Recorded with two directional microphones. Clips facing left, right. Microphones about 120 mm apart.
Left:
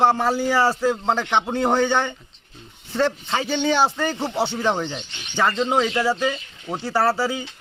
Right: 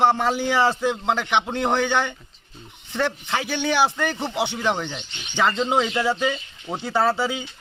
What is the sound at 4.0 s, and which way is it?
Speech, 15° left (ahead or behind).